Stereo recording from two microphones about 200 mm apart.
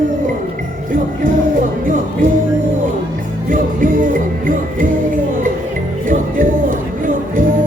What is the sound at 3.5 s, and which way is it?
Music, 45° right (ahead or behind).